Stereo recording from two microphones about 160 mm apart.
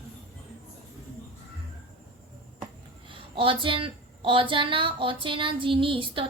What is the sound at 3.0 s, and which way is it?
A woman's voice, 35° right (ahead or behind).